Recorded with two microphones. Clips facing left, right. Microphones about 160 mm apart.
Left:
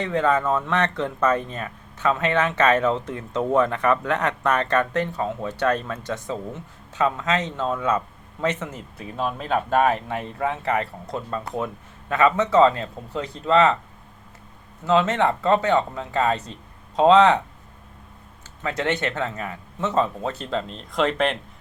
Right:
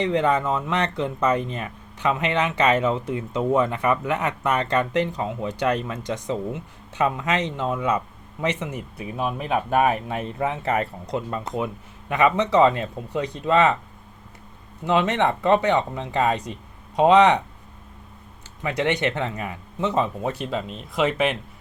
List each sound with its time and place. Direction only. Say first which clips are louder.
0.0 s speech: even; 15° right (ahead or behind)
14.8 s speech: left 1 dB; 15° right (ahead or behind)
18.6 s speech: right 2 dB; 15° right (ahead or behind)